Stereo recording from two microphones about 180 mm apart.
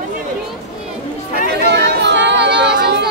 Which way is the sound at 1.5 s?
65° right (ahead or behind).